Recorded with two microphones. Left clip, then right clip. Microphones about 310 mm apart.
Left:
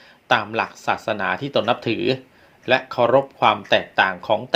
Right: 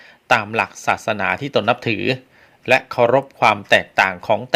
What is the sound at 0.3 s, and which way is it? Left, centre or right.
Speech, right.